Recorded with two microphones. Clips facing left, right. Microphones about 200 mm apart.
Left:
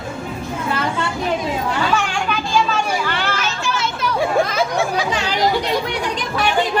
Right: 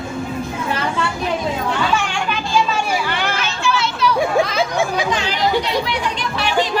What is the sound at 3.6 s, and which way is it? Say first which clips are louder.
Children playing: right 6 dB; 45° left (ahead or behind).